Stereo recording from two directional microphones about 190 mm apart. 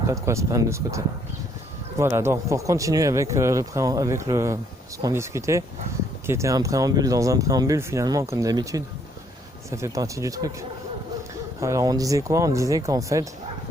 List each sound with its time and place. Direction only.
0.1 s speech: 15° right (ahead or behind)
11.6 s speech: 15° right (ahead or behind)